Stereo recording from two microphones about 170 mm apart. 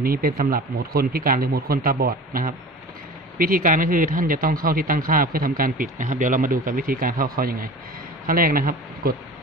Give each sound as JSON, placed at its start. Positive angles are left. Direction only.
{"t": 0.0, "sound": "speech", "side_deg": -60}